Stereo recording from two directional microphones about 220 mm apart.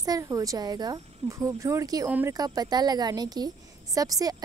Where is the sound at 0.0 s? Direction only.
15° right (ahead or behind).